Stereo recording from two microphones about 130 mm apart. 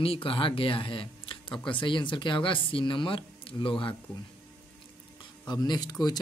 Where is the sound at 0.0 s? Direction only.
45° left (ahead or behind).